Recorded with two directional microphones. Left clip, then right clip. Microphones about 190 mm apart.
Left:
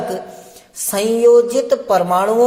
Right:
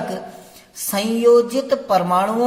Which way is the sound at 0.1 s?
15° left (ahead or behind).